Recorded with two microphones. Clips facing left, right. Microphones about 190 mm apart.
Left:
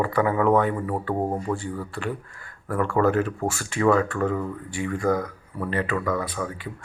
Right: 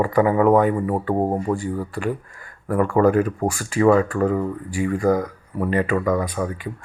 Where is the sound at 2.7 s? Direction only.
15° right (ahead or behind).